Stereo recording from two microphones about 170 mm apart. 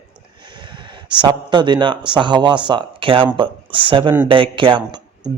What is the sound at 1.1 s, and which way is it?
Speech, 25° right (ahead or behind).